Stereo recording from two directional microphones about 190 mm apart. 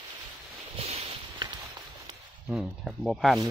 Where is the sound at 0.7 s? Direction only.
30° right (ahead or behind).